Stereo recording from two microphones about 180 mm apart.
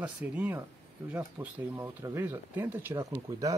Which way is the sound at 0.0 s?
10° right (ahead or behind).